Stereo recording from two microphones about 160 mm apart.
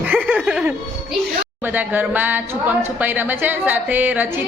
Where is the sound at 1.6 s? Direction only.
10° right (ahead or behind).